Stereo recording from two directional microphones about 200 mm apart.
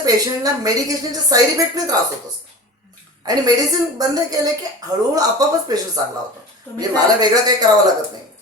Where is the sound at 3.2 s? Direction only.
20° right (ahead or behind).